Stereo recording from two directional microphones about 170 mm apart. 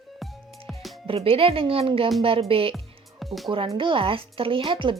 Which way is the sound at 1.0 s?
35° right (ahead or behind).